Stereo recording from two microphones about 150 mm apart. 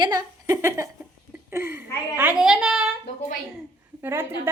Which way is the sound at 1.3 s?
15° right (ahead or behind).